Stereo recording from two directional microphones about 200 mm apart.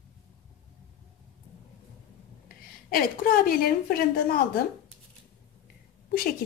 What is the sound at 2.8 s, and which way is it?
Speech, 45° left (ahead or behind).